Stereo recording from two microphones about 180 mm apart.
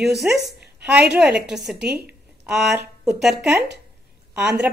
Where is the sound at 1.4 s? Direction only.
Centre (ahead or behind).